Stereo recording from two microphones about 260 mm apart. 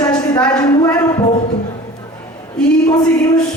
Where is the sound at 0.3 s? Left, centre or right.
Centre.